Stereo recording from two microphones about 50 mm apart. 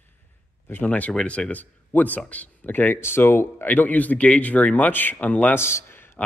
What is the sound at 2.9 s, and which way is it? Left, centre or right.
Speech, left.